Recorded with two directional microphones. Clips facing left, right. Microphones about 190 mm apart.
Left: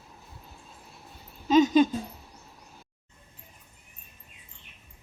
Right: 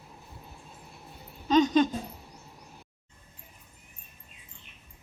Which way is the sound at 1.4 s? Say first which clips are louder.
Left 2 dB; 5° left (ahead or behind).